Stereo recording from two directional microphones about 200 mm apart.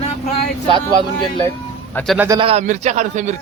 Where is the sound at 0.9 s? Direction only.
25° right (ahead or behind).